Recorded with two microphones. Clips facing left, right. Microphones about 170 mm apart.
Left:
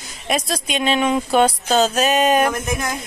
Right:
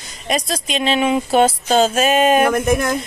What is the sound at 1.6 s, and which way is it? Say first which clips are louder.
Speech: right 2 dB; 50° right (ahead or behind).